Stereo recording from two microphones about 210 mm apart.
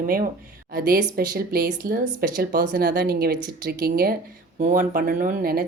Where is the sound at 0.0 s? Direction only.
40° right (ahead or behind).